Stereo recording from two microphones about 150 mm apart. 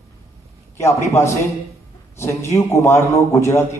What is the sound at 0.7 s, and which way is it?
A man's voice, 20° left (ahead or behind).